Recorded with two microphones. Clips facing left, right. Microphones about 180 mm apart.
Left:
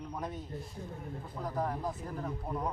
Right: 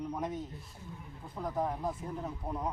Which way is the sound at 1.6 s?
20° right (ahead or behind).